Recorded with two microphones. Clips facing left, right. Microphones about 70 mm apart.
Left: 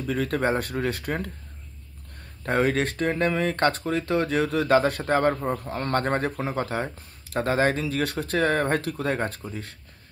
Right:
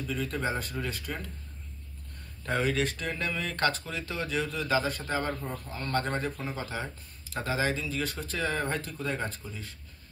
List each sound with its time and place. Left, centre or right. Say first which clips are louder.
0.0 s speech: left 7 dB; left
2.4 s speech: left 5 dB; left
5.6 s a man's voice: left 6 dB; left
6.0 s speech: left 7 dB; left